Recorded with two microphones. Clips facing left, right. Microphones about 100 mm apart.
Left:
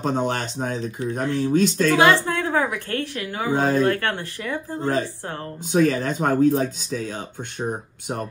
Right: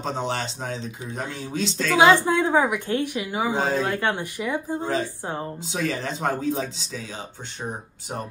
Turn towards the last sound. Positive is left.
turn(degrees=50)  # may be behind; listen again after turning